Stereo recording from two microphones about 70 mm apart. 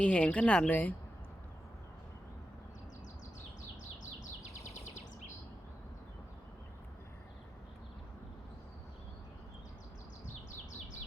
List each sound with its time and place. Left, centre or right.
0.0 s a woman's voice: centre